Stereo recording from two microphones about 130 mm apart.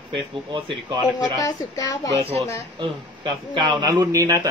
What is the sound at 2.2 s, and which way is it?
Speech, 50° right (ahead or behind).